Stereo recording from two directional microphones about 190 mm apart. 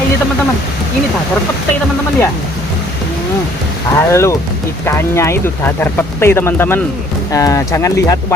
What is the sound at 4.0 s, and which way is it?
Speech, 15° left (ahead or behind).